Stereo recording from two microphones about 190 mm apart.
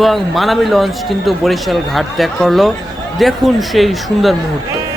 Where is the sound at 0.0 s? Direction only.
Centre (ahead or behind).